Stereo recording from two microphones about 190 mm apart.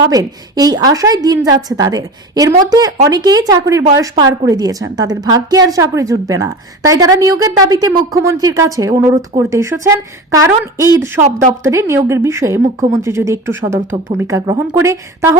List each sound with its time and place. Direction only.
0.0 s a woman's voice: 20° right (ahead or behind)
13.7 s a woman's voice: 25° right (ahead or behind)